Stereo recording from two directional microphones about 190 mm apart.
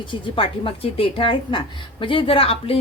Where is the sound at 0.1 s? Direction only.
30° left (ahead or behind).